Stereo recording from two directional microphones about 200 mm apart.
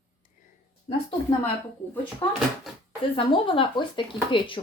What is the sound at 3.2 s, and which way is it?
Speech, 25° left (ahead or behind).